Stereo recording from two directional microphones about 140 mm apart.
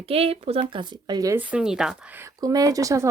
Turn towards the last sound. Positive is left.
turn(degrees=-25)  # may be behind; listen again after turning